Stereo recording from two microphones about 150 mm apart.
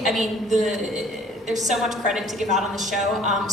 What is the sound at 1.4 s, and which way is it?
Speech, 50° right (ahead or behind).